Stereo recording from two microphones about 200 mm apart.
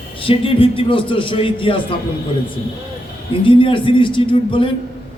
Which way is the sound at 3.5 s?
25° left (ahead or behind).